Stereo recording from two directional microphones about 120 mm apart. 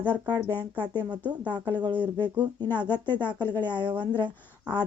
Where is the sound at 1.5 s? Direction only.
40° right (ahead or behind).